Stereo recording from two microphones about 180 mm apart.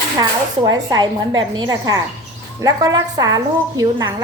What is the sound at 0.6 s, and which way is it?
A woman's voice, 20° right (ahead or behind).